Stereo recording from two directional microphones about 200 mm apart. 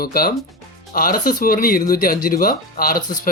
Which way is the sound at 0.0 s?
50° left (ahead or behind).